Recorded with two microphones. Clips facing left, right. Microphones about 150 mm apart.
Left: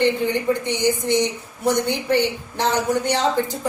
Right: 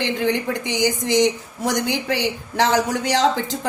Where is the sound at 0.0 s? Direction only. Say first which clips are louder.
Left 2 dB; 90° right.